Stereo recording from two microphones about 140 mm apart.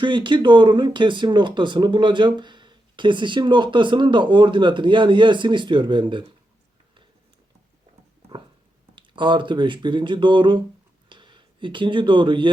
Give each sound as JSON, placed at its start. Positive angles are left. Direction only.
{"t": 0.0, "sound": "speech", "side_deg": -35}
{"t": 9.0, "sound": "speech", "side_deg": -35}